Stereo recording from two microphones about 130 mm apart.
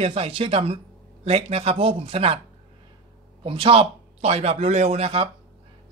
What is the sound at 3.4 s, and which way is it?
Speech, 45° right (ahead or behind).